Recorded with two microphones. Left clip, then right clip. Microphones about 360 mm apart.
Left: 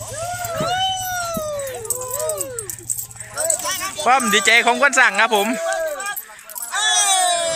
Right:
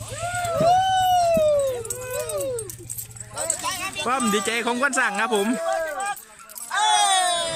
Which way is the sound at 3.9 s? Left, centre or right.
Centre.